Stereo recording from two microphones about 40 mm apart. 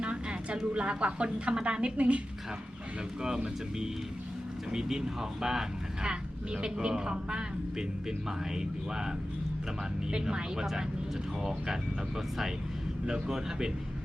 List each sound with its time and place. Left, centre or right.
0.0 s a sound: right
0.7 s speech: right
3.2 s speech: centre